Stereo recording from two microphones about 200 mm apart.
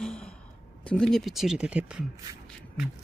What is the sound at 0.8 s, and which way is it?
Speech, 5° left (ahead or behind).